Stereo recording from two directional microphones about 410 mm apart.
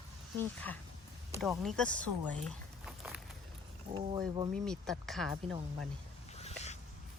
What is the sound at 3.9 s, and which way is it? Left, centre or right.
Speech, centre.